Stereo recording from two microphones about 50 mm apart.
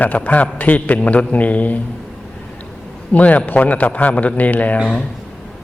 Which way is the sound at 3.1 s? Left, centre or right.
Left.